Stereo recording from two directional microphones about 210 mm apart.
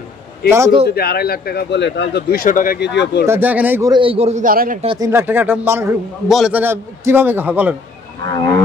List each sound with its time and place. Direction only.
0.5 s a man's voice: 15° right (ahead or behind)
0.8 s speech: 45° left (ahead or behind)
3.3 s a man's voice: 10° right (ahead or behind)
3.9 s a man's voice: 25° right (ahead or behind); by 4.7 s 40° right (ahead or behind)
4.8 s a man's voice: 15° right (ahead or behind)